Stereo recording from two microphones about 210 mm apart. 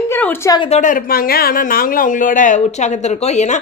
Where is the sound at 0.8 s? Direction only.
40° left (ahead or behind).